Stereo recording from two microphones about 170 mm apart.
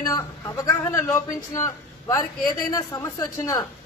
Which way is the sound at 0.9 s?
20° left (ahead or behind).